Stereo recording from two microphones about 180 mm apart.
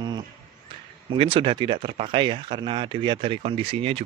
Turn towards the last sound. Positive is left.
turn(degrees=-35)  # may be behind; listen again after turning